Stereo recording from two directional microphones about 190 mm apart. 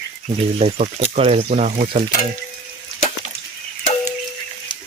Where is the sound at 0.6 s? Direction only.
35° right (ahead or behind).